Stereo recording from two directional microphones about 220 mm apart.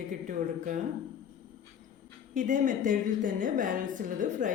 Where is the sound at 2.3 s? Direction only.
35° right (ahead or behind).